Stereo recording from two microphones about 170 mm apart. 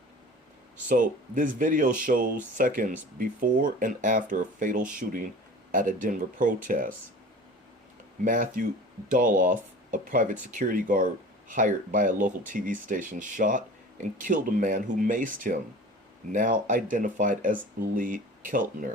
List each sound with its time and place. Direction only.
0.9 s speech: 50° right (ahead or behind)
8.2 s speech: 50° right (ahead or behind)